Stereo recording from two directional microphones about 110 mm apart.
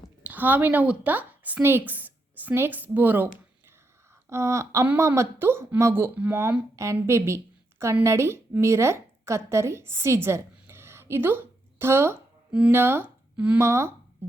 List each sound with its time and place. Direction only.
0.2 s a woman's voice: 15° right (ahead or behind)
4.3 s a woman's voice: 25° right (ahead or behind)
11.8 s a sound: 20° right (ahead or behind)
12.7 s speech: 20° right (ahead or behind)
13.6 s speech: 25° right (ahead or behind)